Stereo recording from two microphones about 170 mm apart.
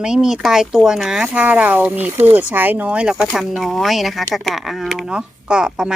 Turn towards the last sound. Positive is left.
turn(degrees=-5)  # may be behind; listen again after turning